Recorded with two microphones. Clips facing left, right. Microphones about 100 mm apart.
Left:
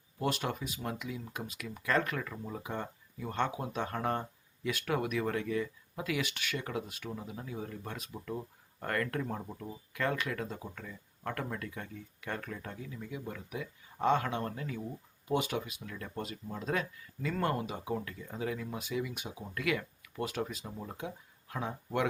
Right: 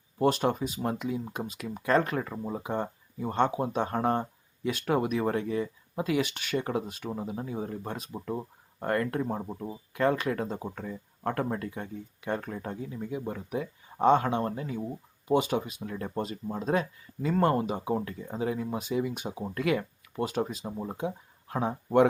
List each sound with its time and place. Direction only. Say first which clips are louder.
0.2 s speech: right 9 dB; 30° right (ahead or behind)